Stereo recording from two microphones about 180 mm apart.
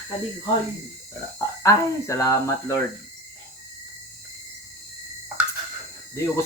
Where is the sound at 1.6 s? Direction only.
15° left (ahead or behind).